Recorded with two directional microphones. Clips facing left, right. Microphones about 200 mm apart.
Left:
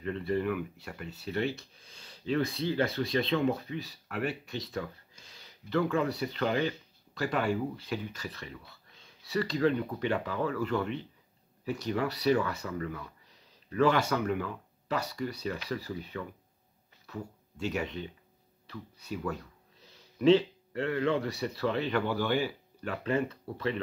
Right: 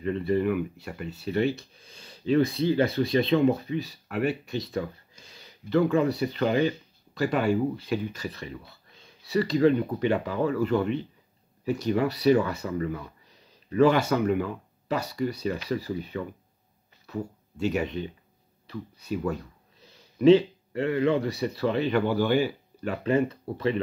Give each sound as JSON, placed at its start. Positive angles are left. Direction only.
{"t": 0.0, "sound": "speech", "side_deg": -15}
{"t": 17.0, "sound": "a sound", "side_deg": -20}
{"t": 17.6, "sound": "speech", "side_deg": -15}